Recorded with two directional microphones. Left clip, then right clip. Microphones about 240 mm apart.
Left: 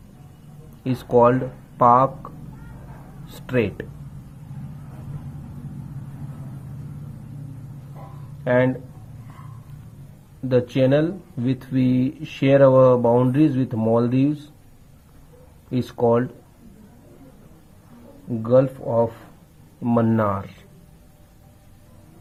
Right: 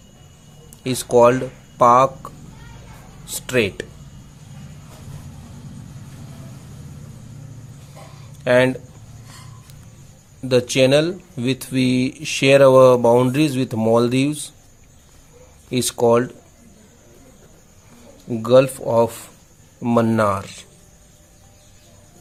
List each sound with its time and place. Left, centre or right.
0.9 s speech: centre
3.3 s speech: centre
8.4 s speech: centre
10.5 s speech: centre
15.7 s speech: right
18.4 s speech: right